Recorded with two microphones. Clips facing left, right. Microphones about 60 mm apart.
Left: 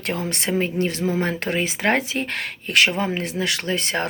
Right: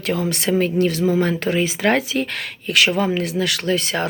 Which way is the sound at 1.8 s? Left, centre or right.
Left.